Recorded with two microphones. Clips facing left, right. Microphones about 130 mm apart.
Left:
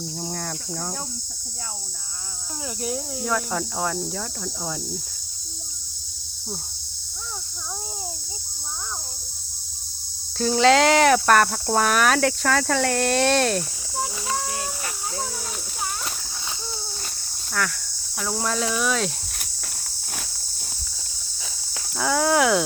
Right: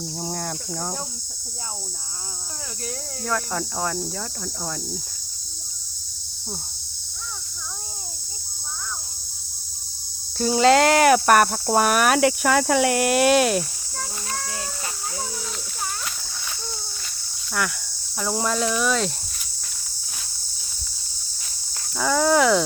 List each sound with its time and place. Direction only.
0.2 s speech: 10° right (ahead or behind)
2.8 s cricket: 10° left (ahead or behind)
10.3 s speech: 5° right (ahead or behind)
13.9 s a sound: 20° left (ahead or behind)
18.4 s cricket: centre (ahead or behind)
21.9 s cricket: 5° left (ahead or behind)